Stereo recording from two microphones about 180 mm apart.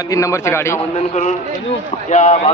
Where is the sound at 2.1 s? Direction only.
40° left (ahead or behind).